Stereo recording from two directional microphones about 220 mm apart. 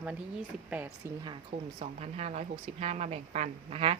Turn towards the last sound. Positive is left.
turn(degrees=-25)  # may be behind; listen again after turning